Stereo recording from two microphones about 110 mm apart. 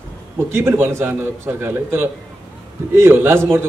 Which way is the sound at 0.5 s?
20° right (ahead or behind).